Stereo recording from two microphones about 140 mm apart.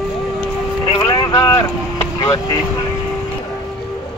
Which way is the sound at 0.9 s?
30° left (ahead or behind).